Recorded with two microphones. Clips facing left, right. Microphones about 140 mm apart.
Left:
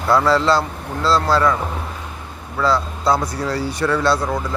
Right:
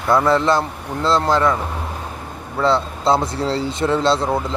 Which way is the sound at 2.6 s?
25° right (ahead or behind).